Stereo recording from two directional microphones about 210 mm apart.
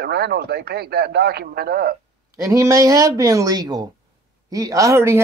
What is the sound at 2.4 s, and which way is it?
Speech, 15° right (ahead or behind).